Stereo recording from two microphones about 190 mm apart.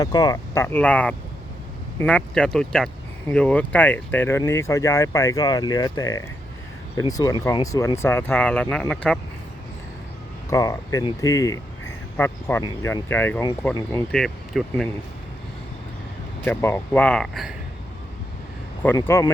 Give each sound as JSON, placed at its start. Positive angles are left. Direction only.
{"t": 0.0, "sound": "speech", "side_deg": 20}
{"t": 10.5, "sound": "speech", "side_deg": 20}
{"t": 16.4, "sound": "speech", "side_deg": 10}
{"t": 18.8, "sound": "speech", "side_deg": 10}